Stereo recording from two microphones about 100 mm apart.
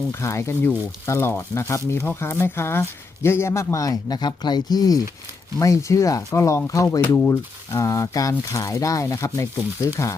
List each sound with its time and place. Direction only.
0.1 s speech: 30° left (ahead or behind)